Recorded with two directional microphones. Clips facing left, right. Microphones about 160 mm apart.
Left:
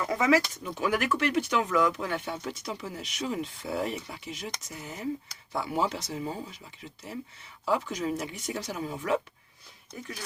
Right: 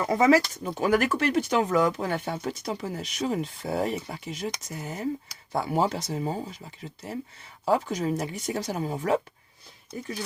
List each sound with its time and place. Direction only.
0.0 s speech: 35° right (ahead or behind)
7.6 s speech: 40° right (ahead or behind)